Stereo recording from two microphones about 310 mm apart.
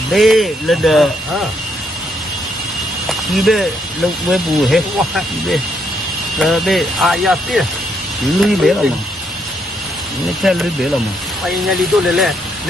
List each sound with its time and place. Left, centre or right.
0.1 s speech: centre
3.1 s speech: centre
10.4 s speech: centre